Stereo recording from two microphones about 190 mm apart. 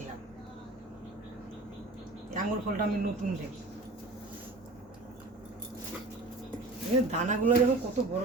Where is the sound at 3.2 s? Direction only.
40° right (ahead or behind).